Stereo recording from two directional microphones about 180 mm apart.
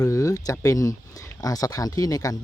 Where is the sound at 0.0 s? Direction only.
15° left (ahead or behind).